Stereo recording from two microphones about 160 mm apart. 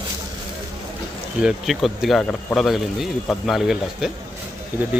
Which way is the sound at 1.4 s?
Centre (ahead or behind).